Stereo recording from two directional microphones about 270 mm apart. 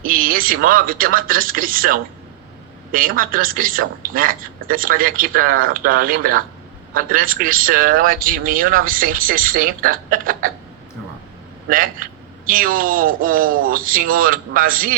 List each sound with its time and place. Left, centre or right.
0.0 s a man's voice: right
11.7 s a man's voice: right